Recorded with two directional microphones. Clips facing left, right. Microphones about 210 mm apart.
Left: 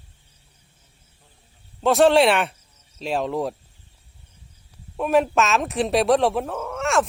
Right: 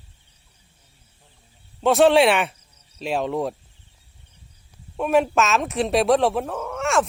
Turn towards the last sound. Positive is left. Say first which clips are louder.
# even
turn(degrees=0)  # may be behind; listen again after turning